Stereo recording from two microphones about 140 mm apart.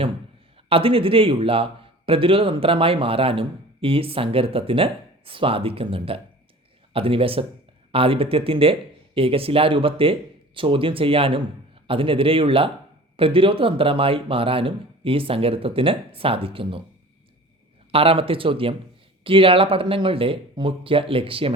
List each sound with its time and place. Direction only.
0.7 s a man's voice: 40° right (ahead or behind)
17.9 s a man's voice: 40° right (ahead or behind)